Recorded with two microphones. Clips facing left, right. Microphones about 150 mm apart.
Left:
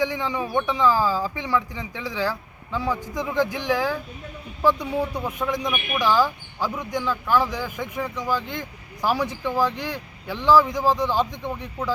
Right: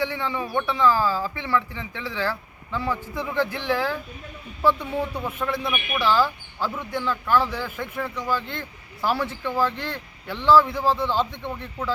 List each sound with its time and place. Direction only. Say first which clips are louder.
0.0 s speech: left 2 dB; 15° left (ahead or behind)